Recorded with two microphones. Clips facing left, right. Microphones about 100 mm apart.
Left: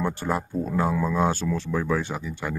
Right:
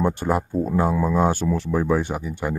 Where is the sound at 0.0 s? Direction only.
15° right (ahead or behind).